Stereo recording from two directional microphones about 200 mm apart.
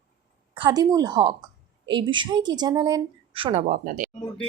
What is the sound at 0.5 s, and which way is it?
Speech, 20° right (ahead or behind).